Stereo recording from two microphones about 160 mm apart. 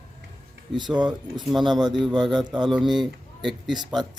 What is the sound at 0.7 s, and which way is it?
Speech, 30° right (ahead or behind).